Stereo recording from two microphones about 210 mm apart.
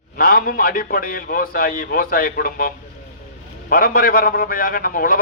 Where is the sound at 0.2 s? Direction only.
45° left (ahead or behind).